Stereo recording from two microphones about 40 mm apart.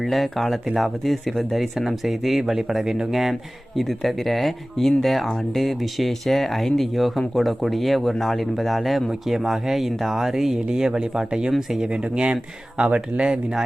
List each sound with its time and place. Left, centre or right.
0.0 s speech: centre; by 13.6 s right